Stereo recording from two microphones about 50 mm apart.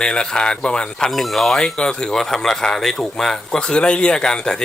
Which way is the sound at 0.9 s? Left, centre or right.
Centre.